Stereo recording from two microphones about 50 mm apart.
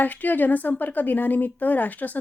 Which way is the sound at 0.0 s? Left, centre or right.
Left.